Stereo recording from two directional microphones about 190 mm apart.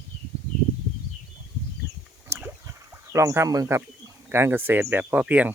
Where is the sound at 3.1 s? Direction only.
15° right (ahead or behind).